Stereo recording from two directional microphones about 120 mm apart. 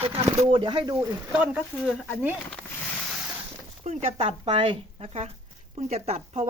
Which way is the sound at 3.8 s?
65° right (ahead or behind).